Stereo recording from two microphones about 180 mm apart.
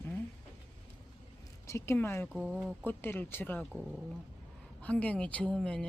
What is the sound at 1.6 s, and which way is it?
Speech, 15° left (ahead or behind).